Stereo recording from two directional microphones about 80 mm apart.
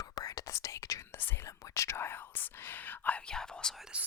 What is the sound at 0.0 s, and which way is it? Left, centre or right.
Whispering, left.